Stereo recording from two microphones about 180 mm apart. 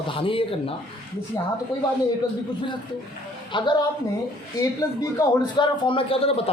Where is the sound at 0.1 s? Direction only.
30° left (ahead or behind).